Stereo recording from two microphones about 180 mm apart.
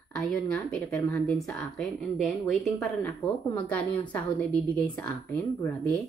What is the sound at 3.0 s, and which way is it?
Speech, 20° left (ahead or behind).